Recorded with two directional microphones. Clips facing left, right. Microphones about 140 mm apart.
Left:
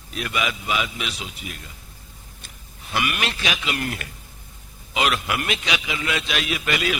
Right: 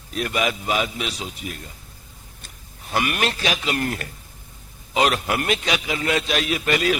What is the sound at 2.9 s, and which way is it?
A man's voice, 40° right (ahead or behind).